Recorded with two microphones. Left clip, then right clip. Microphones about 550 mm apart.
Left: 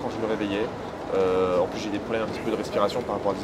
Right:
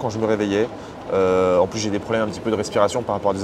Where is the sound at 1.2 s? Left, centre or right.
Right.